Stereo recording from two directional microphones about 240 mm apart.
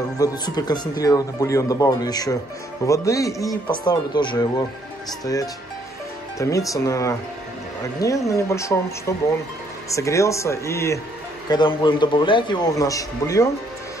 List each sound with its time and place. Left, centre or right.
0.2 s speech: centre
9.8 s a man's voice: centre